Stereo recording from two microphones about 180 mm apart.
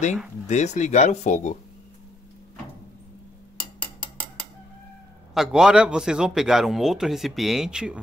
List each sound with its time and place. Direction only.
0.5 s speech: 40° left (ahead or behind)
5.3 s a man's voice: 5° right (ahead or behind)